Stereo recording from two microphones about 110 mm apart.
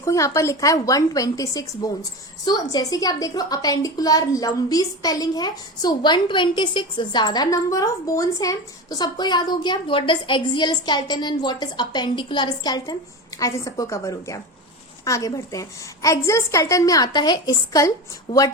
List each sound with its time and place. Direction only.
0.0 s a woman's voice: 30° left (ahead or behind)